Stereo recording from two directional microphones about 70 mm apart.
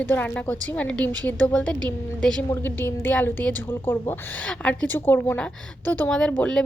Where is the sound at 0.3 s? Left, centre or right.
Centre.